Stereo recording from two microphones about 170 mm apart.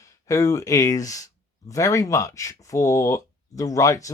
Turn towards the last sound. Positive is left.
turn(degrees=20)  # may be behind; listen again after turning